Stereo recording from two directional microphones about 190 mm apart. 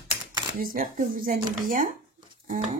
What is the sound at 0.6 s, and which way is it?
Speech, 45° right (ahead or behind).